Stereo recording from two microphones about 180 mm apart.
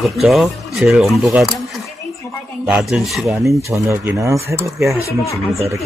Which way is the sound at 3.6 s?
15° right (ahead or behind).